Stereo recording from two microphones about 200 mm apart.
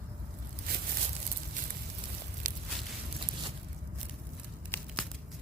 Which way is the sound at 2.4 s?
40° right (ahead or behind).